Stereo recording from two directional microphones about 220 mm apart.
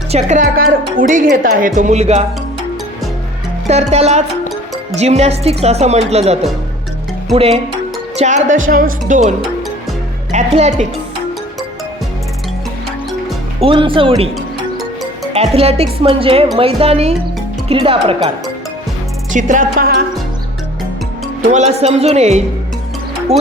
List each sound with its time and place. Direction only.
0.1 s speech: 30° right (ahead or behind)
3.7 s a woman's voice: 30° right (ahead or behind)
10.3 s speech: 30° right (ahead or behind)
13.6 s a woman's voice: 25° right (ahead or behind)
15.3 s a woman's voice: 30° right (ahead or behind)
19.3 s speech: 35° right (ahead or behind)
21.4 s a woman's voice: 30° right (ahead or behind)